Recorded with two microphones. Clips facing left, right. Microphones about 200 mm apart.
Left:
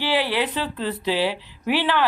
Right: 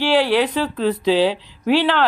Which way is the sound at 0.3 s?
15° right (ahead or behind).